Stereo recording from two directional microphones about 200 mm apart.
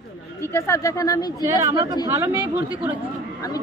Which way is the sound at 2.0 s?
10° right (ahead or behind).